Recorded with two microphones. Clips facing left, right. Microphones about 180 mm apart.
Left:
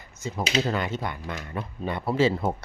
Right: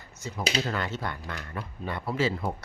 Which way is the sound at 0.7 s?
15° left (ahead or behind).